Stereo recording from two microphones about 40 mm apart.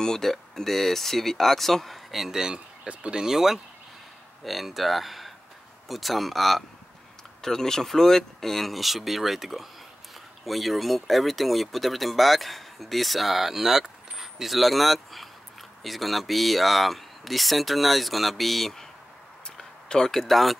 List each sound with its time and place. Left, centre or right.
0.0 s speech: centre
2.3 s speech: centre
2.9 s speech: right
3.2 s speech: centre
19.5 s a sound: centre